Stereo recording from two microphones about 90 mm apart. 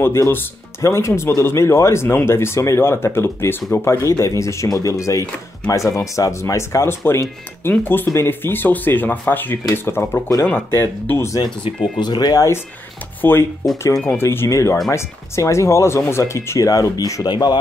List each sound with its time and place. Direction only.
0.0 s speech: 30° left (ahead or behind)
7.7 s speech: 20° left (ahead or behind)
12.0 s speech: 50° left (ahead or behind)
13.2 s speech: 25° left (ahead or behind); by 17.3 s 40° left (ahead or behind)
17.3 s speech: 55° left (ahead or behind)